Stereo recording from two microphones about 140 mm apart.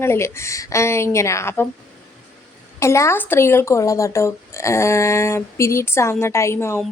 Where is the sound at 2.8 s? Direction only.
20° left (ahead or behind).